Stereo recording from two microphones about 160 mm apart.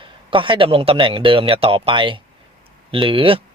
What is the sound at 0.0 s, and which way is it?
Speech, 30° right (ahead or behind).